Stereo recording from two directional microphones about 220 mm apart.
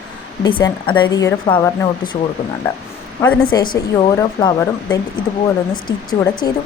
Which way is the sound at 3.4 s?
20° left (ahead or behind).